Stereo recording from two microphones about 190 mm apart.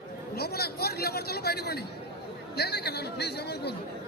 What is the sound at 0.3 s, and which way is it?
Speech, 55° left (ahead or behind).